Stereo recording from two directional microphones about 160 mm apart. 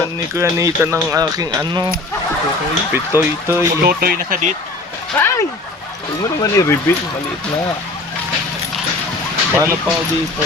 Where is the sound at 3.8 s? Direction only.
70° right (ahead or behind).